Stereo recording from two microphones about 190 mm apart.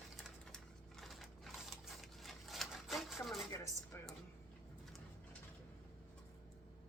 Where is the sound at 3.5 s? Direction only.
15° left (ahead or behind).